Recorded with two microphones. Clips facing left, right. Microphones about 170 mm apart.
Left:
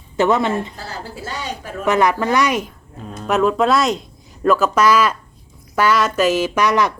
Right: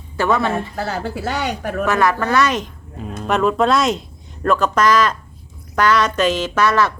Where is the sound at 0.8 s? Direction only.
65° right (ahead or behind).